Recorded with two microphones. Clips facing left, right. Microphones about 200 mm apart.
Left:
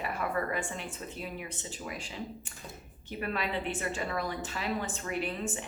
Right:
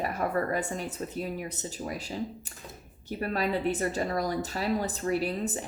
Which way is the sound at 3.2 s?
40° right (ahead or behind).